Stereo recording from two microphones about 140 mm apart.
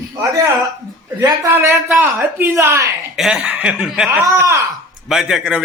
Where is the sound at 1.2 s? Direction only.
15° right (ahead or behind).